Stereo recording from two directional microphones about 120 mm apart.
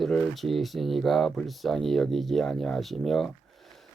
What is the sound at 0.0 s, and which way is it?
Speech, centre (ahead or behind).